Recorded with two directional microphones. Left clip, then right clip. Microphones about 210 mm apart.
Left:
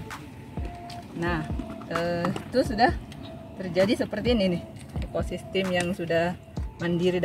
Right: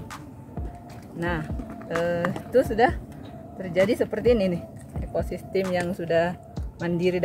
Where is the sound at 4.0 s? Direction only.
15° right (ahead or behind).